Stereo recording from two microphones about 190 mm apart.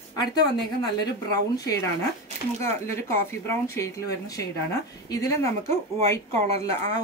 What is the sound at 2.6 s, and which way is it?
Speech, 15° left (ahead or behind).